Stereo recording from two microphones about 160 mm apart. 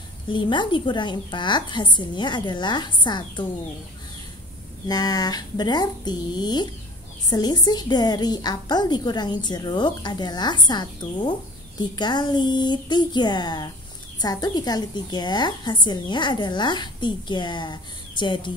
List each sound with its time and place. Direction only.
0.3 s a woman's voice: 30° left (ahead or behind)
4.8 s a woman's voice: 25° left (ahead or behind)